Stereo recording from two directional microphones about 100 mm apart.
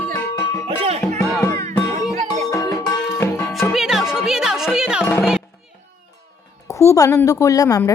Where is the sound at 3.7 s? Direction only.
5° right (ahead or behind).